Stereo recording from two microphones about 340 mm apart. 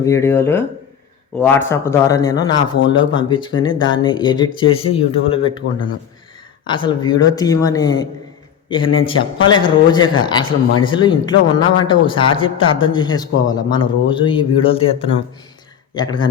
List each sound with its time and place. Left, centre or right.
0.0 s speech: centre